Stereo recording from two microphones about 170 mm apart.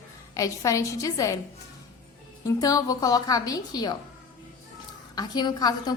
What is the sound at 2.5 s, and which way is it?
A woman's voice, 20° left (ahead or behind).